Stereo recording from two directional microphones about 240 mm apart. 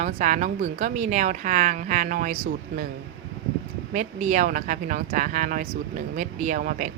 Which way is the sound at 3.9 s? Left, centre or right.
Right.